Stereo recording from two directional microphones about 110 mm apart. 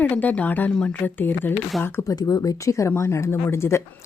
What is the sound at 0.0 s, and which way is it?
Speech, 15° left (ahead or behind).